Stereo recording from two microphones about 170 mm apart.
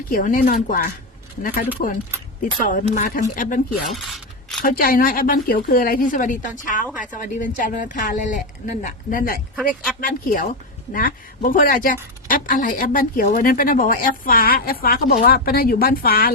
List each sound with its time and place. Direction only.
0.1 s speech: 55° left (ahead or behind)
2.6 s speech: 50° left (ahead or behind)
3.8 s mechanisms: centre (ahead or behind)
4.6 s a woman's voice: 60° left (ahead or behind)